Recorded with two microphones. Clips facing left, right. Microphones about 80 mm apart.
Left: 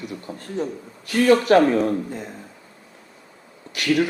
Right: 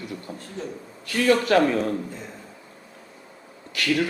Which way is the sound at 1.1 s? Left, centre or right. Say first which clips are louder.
Left 4 dB; left.